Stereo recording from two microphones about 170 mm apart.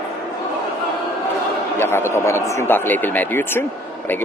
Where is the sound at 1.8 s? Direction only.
15° left (ahead or behind).